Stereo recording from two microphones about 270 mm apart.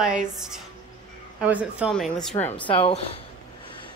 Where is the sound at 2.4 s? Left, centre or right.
Centre.